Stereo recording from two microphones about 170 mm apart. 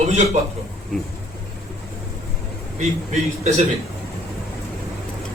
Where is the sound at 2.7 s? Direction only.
45° right (ahead or behind).